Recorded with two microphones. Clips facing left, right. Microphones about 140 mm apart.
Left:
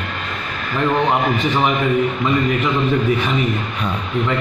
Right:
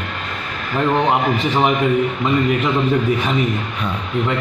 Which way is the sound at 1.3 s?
30° right (ahead or behind).